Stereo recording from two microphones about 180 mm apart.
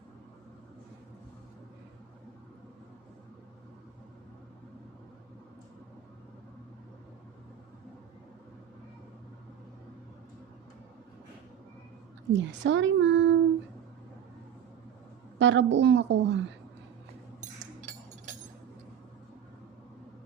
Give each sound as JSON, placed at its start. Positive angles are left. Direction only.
{"t": 12.3, "sound": "a woman's voice", "side_deg": -90}
{"t": 15.4, "sound": "a woman's voice", "side_deg": -90}